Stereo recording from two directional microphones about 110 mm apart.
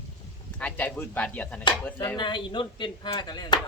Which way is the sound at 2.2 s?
45° left (ahead or behind).